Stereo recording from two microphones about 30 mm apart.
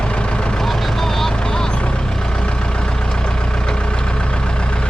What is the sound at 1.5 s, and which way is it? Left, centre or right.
Vehicle, left.